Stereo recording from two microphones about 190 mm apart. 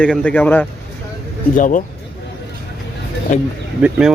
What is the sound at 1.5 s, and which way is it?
Speech, 45° left (ahead or behind).